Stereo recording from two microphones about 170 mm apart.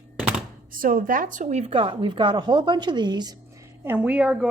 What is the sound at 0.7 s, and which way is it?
Speech, 55° right (ahead or behind).